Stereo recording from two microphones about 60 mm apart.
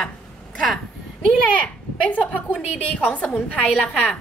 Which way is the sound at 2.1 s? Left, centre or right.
Left.